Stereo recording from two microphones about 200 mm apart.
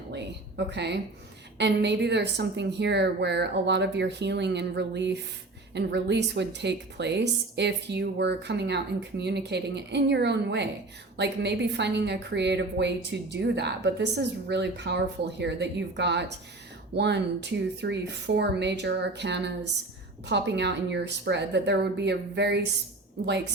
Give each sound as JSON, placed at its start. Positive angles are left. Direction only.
{"t": 0.1, "sound": "a woman's voice", "side_deg": -60}